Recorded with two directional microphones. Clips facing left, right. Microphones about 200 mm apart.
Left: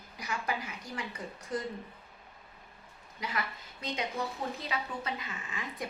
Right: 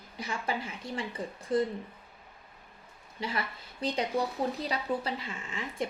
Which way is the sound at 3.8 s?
35° right (ahead or behind).